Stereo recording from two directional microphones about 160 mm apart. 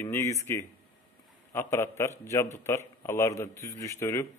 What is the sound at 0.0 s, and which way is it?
A man's voice, 20° left (ahead or behind).